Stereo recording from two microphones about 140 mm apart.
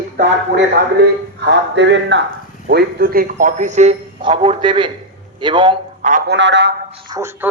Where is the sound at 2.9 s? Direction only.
90° right; by 4.0 s 55° right (ahead or behind).